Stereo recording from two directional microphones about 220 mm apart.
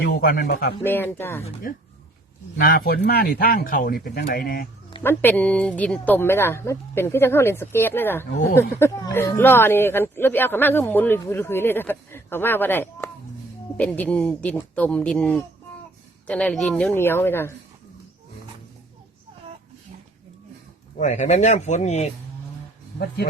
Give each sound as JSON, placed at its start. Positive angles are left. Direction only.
{"t": 0.0, "sound": "speech", "side_deg": 45}
{"t": 0.8, "sound": "speech", "side_deg": 10}
{"t": 1.7, "sound": "speech", "side_deg": 40}
{"t": 5.0, "sound": "speech", "side_deg": 10}
{"t": 8.3, "sound": "speech", "side_deg": 50}
{"t": 8.8, "sound": "speech", "side_deg": 15}
{"t": 21.0, "sound": "speech", "side_deg": 35}